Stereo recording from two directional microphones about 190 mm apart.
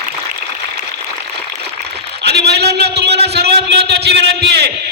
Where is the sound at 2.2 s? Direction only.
60° right (ahead or behind).